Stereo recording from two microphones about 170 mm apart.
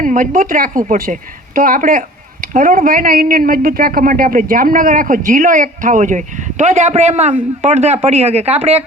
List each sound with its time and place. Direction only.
0.0 s speech: 55° right (ahead or behind); by 8.8 s 35° right (ahead or behind)